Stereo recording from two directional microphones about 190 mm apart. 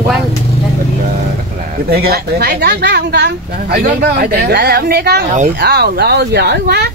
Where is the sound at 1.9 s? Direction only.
55° right (ahead or behind).